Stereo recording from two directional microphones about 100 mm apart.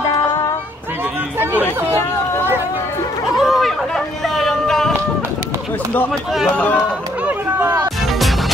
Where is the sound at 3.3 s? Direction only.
Centre (ahead or behind).